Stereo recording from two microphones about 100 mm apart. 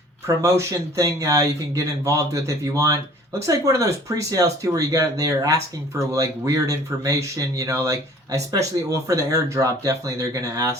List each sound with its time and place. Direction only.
0.3 s speech: 30° right (ahead or behind)